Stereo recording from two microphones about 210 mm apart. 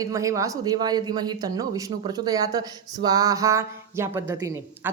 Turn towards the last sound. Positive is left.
turn(degrees=-15)  # may be behind; listen again after turning